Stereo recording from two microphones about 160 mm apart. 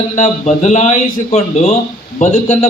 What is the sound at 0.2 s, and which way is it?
A man's voice, 45° left (ahead or behind).